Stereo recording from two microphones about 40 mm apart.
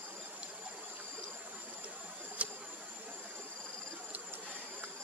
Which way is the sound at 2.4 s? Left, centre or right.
Right.